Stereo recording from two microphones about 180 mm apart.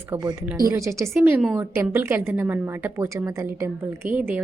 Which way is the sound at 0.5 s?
15° right (ahead or behind).